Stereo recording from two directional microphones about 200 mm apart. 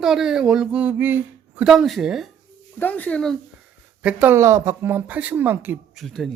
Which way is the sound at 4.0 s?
5° right (ahead or behind).